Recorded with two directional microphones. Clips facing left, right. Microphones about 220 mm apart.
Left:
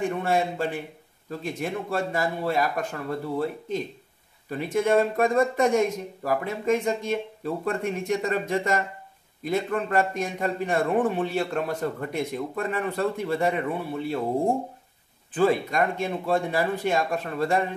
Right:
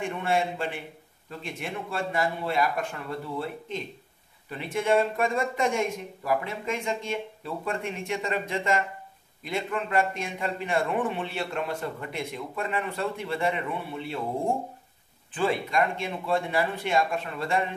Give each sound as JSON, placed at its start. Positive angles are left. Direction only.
{"t": 0.0, "sound": "a man's voice", "side_deg": 40}
{"t": 15.3, "sound": "speech", "side_deg": 40}